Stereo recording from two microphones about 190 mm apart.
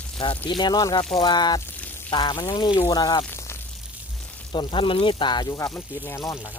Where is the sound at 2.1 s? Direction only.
25° left (ahead or behind).